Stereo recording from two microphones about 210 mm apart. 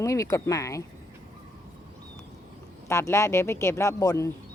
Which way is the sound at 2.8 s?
15° left (ahead or behind).